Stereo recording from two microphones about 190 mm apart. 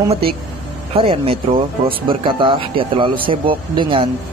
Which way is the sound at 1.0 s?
30° right (ahead or behind).